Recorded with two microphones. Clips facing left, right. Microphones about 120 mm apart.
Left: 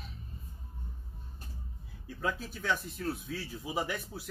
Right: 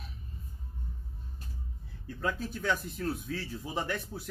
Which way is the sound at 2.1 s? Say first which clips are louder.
Right 2 dB; centre (ahead or behind).